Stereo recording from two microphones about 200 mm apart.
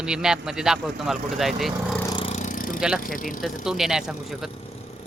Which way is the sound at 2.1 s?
25° left (ahead or behind).